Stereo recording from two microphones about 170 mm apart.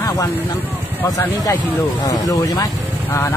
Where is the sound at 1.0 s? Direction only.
20° left (ahead or behind).